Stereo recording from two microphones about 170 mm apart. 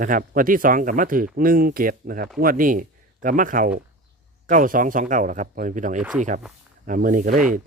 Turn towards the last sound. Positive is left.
turn(degrees=-50)  # may be behind; listen again after turning